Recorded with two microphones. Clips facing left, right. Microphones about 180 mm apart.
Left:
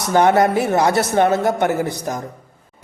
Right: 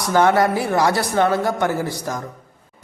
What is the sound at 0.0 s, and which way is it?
A man's voice, 20° left (ahead or behind).